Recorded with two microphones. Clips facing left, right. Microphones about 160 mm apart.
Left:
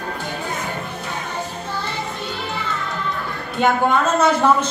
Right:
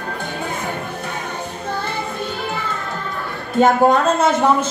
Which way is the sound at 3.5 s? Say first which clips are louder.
Right 4 dB; 40° right (ahead or behind).